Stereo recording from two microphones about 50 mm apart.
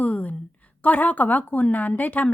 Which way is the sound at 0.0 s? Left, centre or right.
Left.